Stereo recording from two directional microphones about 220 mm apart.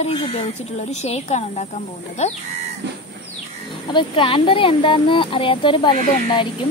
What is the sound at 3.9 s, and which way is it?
Speech, 25° left (ahead or behind).